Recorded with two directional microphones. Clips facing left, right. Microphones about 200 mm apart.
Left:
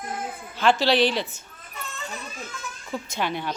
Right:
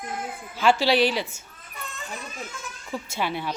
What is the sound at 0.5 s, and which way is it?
Speech, 10° right (ahead or behind).